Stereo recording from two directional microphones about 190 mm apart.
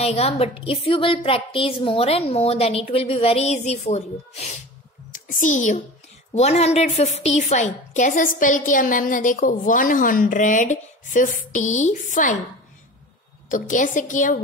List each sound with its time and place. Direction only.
0.0 s a woman's voice: 35° left (ahead or behind)
13.5 s a woman's voice: 40° left (ahead or behind)